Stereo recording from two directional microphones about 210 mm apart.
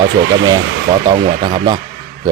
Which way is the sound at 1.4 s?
20° right (ahead or behind).